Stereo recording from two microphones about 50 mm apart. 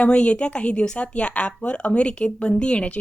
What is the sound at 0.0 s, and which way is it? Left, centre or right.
Speech, left.